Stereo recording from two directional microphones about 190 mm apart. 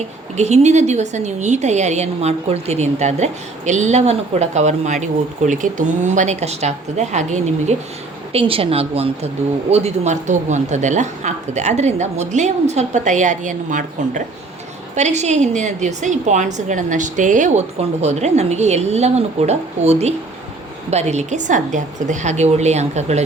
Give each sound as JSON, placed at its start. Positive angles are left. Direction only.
{"t": 0.3, "sound": "speech", "side_deg": -35}